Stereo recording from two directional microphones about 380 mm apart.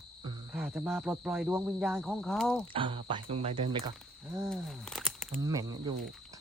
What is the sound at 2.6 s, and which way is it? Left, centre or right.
A man's voice, centre.